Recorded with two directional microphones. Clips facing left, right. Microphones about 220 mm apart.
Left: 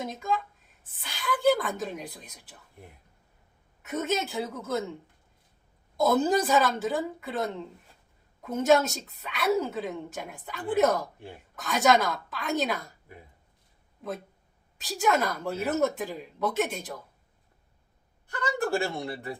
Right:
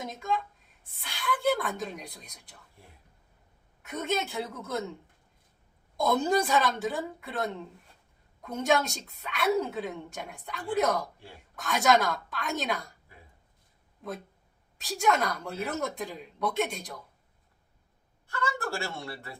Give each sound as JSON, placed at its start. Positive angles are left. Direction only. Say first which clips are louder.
{"t": 0.0, "sound": "a woman's voice", "louder": "left 2 dB", "side_deg": 0}
{"t": 3.8, "sound": "a woman's voice", "louder": "left 2 dB", "side_deg": 5}
{"t": 6.0, "sound": "a woman's voice", "louder": "left 2 dB", "side_deg": 5}
{"t": 14.0, "sound": "a woman's voice", "louder": "left 2 dB", "side_deg": 0}
{"t": 18.3, "sound": "speech", "louder": "left 5 dB", "side_deg": 15}